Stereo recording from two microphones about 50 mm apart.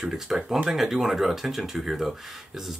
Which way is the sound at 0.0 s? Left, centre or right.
Centre.